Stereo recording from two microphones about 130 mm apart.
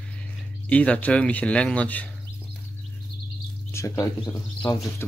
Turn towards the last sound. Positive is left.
turn(degrees=10)  # may be behind; listen again after turning